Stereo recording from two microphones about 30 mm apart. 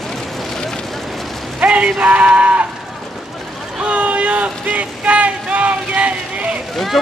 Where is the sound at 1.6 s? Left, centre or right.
Right.